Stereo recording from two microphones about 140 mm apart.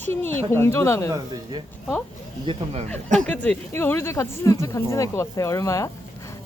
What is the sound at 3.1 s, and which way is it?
Speech, 10° left (ahead or behind).